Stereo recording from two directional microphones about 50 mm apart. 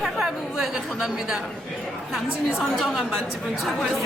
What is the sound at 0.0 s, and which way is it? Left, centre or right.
Chatter, centre.